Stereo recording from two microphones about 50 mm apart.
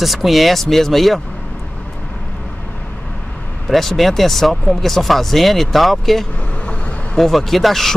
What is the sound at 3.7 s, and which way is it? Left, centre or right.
Speech, centre.